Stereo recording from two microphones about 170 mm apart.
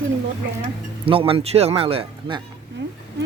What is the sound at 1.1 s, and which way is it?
Speech, 35° right (ahead or behind).